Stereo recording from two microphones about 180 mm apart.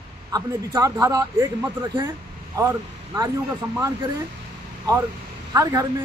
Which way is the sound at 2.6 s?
20° right (ahead or behind).